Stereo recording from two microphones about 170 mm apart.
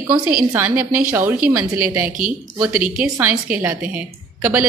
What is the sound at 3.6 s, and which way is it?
A woman's voice, 15° right (ahead or behind).